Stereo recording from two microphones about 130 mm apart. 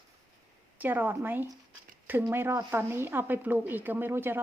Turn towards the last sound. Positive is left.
turn(degrees=-20)  # may be behind; listen again after turning